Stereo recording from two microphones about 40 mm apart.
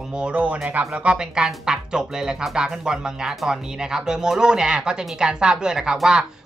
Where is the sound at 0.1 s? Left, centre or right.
Right.